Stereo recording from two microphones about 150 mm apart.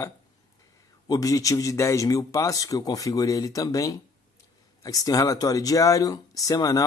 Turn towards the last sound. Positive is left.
turn(degrees=20)  # may be behind; listen again after turning